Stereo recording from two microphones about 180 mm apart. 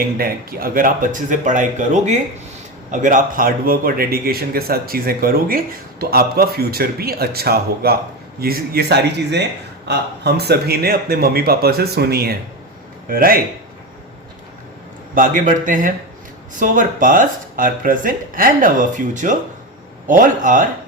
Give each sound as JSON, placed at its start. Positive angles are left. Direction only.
{"t": 0.2, "sound": "speech", "side_deg": -55}
{"t": 15.1, "sound": "speech", "side_deg": -50}